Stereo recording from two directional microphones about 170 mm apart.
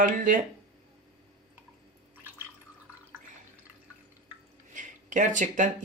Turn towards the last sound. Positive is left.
turn(degrees=-50)  # may be behind; listen again after turning